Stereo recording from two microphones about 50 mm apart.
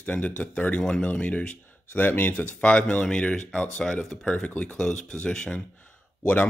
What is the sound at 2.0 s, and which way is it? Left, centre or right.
Speech, left.